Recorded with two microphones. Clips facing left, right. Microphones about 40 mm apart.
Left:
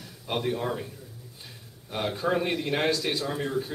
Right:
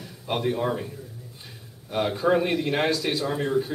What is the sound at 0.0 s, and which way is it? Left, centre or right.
Speech, centre.